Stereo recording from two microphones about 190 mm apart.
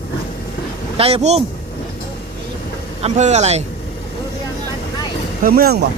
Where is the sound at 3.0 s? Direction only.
35° right (ahead or behind).